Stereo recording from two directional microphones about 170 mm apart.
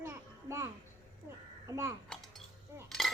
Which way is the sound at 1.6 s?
15° right (ahead or behind).